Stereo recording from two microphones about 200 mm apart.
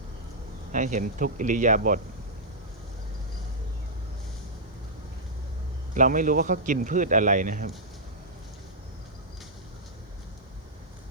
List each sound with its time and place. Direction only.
0.7 s a man's voice: 40° right (ahead or behind)
5.9 s a man's voice: 40° right (ahead or behind)